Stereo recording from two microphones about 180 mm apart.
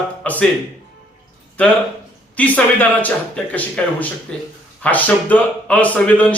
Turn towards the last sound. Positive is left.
turn(degrees=10)  # may be behind; listen again after turning